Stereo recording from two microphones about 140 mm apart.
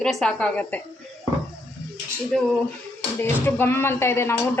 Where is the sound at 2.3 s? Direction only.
Centre (ahead or behind).